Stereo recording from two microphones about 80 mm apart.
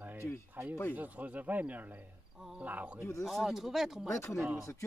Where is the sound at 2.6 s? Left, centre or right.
Centre.